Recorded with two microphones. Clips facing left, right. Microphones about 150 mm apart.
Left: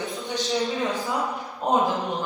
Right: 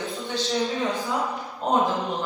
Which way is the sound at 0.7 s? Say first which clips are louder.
Even; centre (ahead or behind).